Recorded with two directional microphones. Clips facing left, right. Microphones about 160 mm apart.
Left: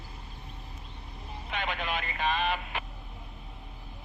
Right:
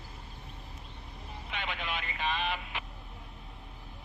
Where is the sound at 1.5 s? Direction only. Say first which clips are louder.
Left 4 dB; 45° left (ahead or behind).